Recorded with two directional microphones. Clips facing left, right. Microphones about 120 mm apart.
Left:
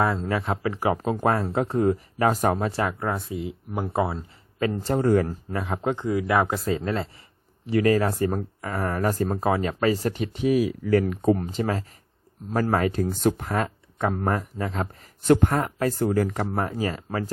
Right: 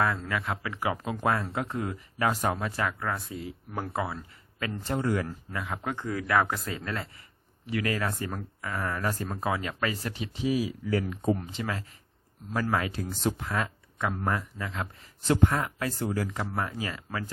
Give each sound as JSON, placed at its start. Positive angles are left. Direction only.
{"t": 0.0, "sound": "speech", "side_deg": 25}
{"t": 3.3, "sound": "speech", "side_deg": 20}
{"t": 11.3, "sound": "speech", "side_deg": 40}